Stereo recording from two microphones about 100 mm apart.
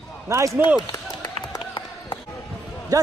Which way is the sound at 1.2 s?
45° left (ahead or behind).